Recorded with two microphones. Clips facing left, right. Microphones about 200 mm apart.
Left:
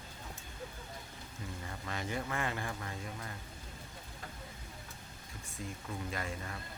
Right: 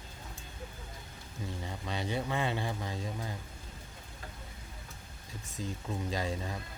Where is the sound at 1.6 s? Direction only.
20° right (ahead or behind).